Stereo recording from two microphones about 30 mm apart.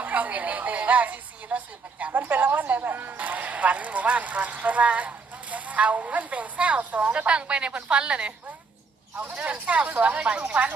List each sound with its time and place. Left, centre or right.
0.0 s speech: right
2.1 s a woman's voice: right
3.2 s speech: right
7.3 s a woman's voice: right
9.4 s speech: right
10.2 s a woman's voice: right
10.4 s speech: right